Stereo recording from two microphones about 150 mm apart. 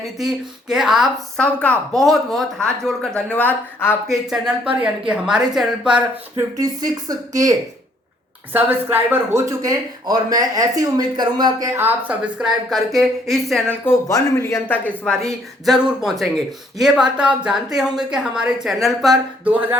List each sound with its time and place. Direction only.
0.0 s speech: centre (ahead or behind)
4.1 s speech: 5° right (ahead or behind)
6.3 s speech: 25° right (ahead or behind)
8.5 s speech: 15° right (ahead or behind)
13.8 s speech: 20° left (ahead or behind); by 19.1 s centre (ahead or behind)